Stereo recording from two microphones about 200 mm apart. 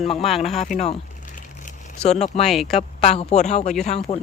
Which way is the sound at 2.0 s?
35° left (ahead or behind).